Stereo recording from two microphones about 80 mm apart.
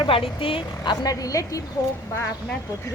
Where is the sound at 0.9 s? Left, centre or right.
Left.